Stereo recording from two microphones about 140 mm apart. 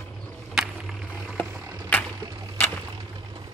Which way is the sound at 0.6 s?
Centre (ahead or behind).